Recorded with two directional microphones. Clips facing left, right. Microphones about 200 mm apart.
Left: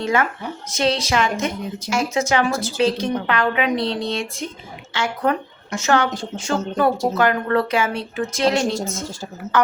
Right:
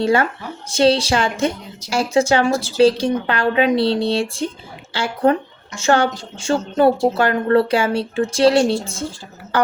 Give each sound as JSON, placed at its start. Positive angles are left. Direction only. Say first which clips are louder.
{"t": 0.0, "sound": "a woman's voice", "louder": "right 4 dB", "side_deg": -30}